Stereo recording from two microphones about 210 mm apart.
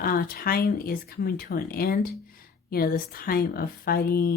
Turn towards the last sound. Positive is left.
turn(degrees=45)  # may be behind; listen again after turning